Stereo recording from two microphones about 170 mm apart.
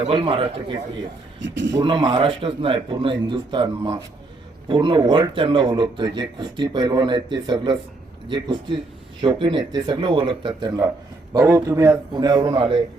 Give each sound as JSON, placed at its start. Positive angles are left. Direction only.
{"t": 0.0, "sound": "a man's voice", "side_deg": -30}
{"t": 1.4, "sound": "speech", "side_deg": -90}
{"t": 1.7, "sound": "speech", "side_deg": -25}